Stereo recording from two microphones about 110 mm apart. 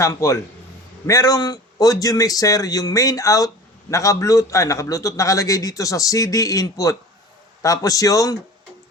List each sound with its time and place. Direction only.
0.0 s a man's voice: 30° left (ahead or behind)